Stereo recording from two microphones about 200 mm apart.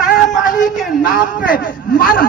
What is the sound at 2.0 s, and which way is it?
Speech, 45° left (ahead or behind).